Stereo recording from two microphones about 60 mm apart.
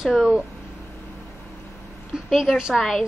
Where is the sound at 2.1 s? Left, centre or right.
Centre.